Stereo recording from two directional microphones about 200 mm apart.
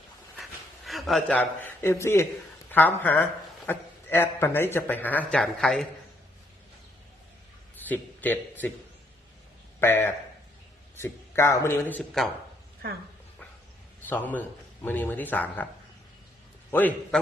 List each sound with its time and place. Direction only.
0.9 s a man's voice: centre (ahead or behind)
7.9 s a man's voice: 10° left (ahead or behind)
9.8 s a man's voice: 10° left (ahead or behind)
14.1 s a man's voice: 10° left (ahead or behind)
16.7 s a man's voice: 10° left (ahead or behind)